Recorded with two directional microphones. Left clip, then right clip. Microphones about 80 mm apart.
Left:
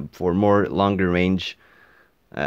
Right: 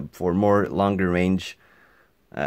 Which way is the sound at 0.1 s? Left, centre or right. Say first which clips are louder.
Left 2 dB; centre.